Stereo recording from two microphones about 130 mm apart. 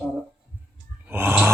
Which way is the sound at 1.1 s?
15° right (ahead or behind).